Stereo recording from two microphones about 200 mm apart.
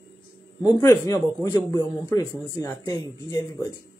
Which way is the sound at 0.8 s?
15° left (ahead or behind).